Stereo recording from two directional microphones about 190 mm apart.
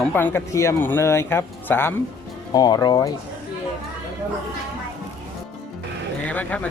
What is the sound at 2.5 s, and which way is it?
Speech, 20° left (ahead or behind).